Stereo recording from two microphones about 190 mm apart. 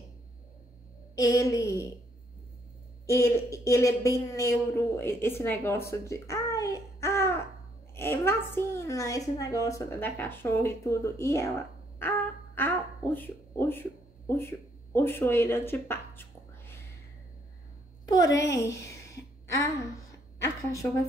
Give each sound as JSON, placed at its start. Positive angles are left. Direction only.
{"t": 1.1, "sound": "a woman's voice", "side_deg": 20}
{"t": 3.1, "sound": "a woman's voice", "side_deg": 15}
{"t": 12.5, "sound": "a sound", "side_deg": 10}
{"t": 18.0, "sound": "a woman's voice", "side_deg": 20}
{"t": 19.1, "sound": "a sound", "side_deg": 15}
{"t": 20.4, "sound": "a woman's voice", "side_deg": 15}